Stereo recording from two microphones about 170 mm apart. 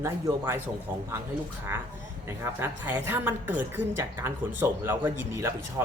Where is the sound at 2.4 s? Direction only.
10° right (ahead or behind).